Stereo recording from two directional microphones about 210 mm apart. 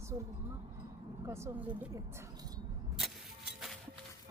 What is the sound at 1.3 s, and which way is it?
Speech, 15° right (ahead or behind).